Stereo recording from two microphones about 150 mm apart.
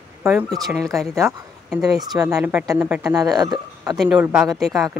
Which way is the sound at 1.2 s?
20° right (ahead or behind).